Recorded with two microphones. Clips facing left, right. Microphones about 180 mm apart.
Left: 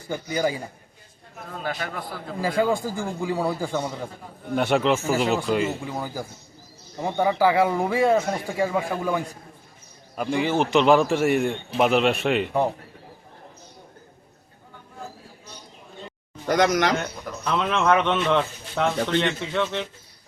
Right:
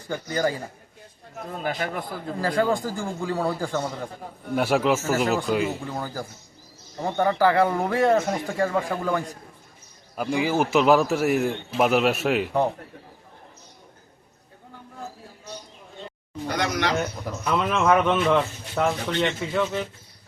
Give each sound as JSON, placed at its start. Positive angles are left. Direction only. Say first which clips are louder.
{"t": 0.1, "sound": "a man's voice", "louder": "even", "side_deg": 15}
{"t": 1.6, "sound": "a man's voice", "louder": "right 2 dB", "side_deg": -20}
{"t": 2.4, "sound": "a man's voice", "louder": "left 1 dB", "side_deg": 15}
{"t": 4.5, "sound": "speech", "louder": "even", "side_deg": -5}
{"t": 5.8, "sound": "a man's voice", "louder": "left 1 dB", "side_deg": 10}
{"t": 10.2, "sound": "speech", "louder": "even", "side_deg": 0}
{"t": 16.5, "sound": "speech", "louder": "left 6 dB", "side_deg": 50}
{"t": 17.0, "sound": "speech", "louder": "right 3 dB", "side_deg": -5}